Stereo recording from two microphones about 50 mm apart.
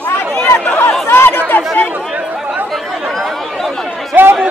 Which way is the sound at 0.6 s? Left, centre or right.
Left.